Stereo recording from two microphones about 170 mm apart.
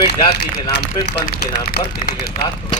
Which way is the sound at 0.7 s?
70° left (ahead or behind).